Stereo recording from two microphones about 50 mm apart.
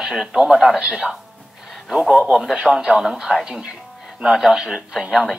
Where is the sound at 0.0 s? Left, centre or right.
Centre.